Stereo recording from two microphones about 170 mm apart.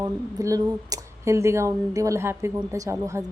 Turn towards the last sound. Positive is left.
turn(degrees=-15)  # may be behind; listen again after turning